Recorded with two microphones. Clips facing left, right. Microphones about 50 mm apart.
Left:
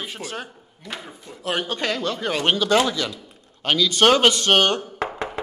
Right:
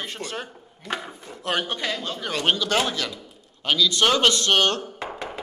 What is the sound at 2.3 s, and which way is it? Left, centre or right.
Speech, centre.